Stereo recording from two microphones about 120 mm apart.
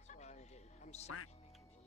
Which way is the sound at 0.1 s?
75° left (ahead or behind).